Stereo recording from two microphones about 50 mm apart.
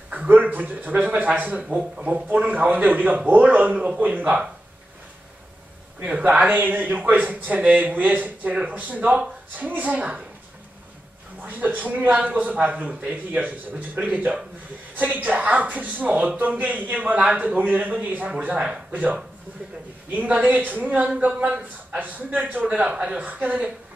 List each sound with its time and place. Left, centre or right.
0.1 s speech: right
1.8 s speech: centre
2.4 s a man's voice: right
5.9 s a man's voice: right
11.4 s a man's voice: right
22.4 s speech: centre